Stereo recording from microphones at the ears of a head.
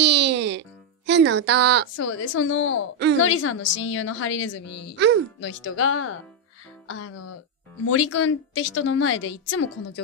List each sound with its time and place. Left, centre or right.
0.0 s music: right
1.9 s a woman's voice: left
4.9 s a child's voice: right
5.4 s a woman's voice: left